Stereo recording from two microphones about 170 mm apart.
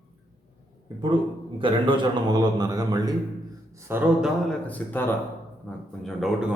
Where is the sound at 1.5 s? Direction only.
30° right (ahead or behind).